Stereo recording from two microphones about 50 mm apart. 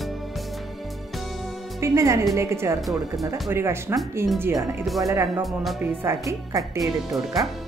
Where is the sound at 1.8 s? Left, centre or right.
Right.